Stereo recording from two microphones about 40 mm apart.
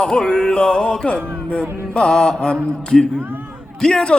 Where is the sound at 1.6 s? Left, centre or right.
Right.